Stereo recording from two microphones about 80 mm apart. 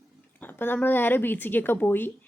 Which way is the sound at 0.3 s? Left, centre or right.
Left.